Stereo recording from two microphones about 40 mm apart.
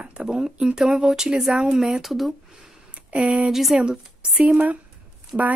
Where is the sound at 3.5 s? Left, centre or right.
Centre.